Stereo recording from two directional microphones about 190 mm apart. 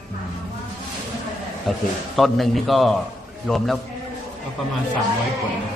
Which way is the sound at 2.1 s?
Centre (ahead or behind).